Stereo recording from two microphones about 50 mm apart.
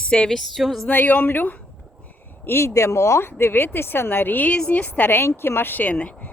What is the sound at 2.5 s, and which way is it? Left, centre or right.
Speech, left.